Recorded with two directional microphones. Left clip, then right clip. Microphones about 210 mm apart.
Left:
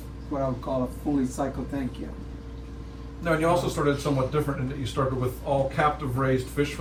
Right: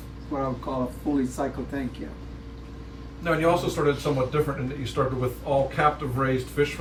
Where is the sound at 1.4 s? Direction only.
5° right (ahead or behind).